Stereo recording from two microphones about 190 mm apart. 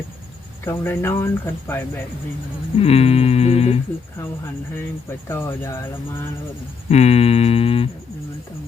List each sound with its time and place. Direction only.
0.6 s speech: 15° left (ahead or behind)
2.7 s humming: 30° left (ahead or behind)
5.3 s speech: 15° left (ahead or behind)
6.9 s a sound: 35° left (ahead or behind)